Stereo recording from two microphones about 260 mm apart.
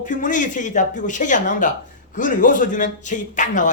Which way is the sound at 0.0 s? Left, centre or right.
Left.